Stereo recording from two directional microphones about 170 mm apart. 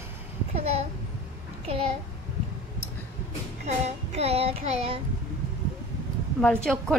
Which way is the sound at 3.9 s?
35° right (ahead or behind).